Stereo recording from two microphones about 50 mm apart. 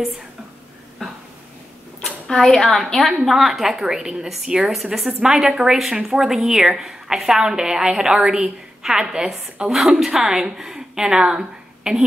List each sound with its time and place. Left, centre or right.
2.2 s a woman's voice: centre